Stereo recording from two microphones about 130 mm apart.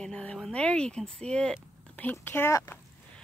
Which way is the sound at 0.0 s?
5° left (ahead or behind).